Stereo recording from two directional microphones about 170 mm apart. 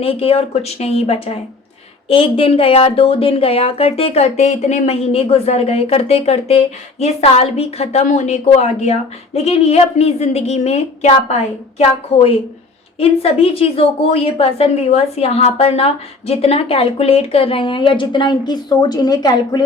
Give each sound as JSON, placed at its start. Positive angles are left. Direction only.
{"t": 0.0, "sound": "a woman's voice", "side_deg": 35}